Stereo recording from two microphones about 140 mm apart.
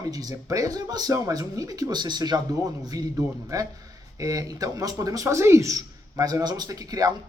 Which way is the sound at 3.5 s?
25° right (ahead or behind).